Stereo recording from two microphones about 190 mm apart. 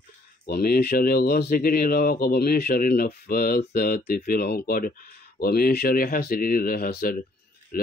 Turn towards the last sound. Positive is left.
turn(degrees=55)  # may be behind; listen again after turning